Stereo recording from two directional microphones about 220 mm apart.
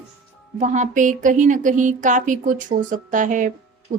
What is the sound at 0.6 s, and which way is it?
A woman's voice, 35° right (ahead or behind).